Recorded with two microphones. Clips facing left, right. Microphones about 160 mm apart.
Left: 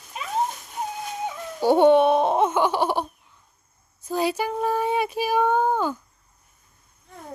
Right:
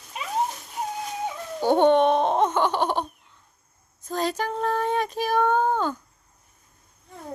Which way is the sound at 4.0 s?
10° left (ahead or behind).